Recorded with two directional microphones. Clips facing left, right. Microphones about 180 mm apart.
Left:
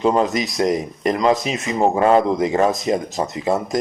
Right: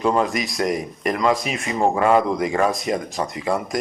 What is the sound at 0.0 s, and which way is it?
Speech, 25° left (ahead or behind).